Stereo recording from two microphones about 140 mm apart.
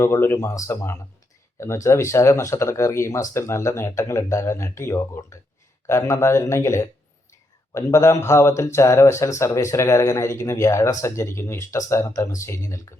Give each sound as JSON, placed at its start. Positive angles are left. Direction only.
{"t": 0.0, "sound": "a man's voice", "side_deg": 15}